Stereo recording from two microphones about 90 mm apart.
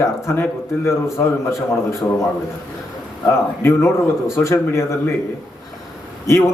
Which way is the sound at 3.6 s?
30° left (ahead or behind).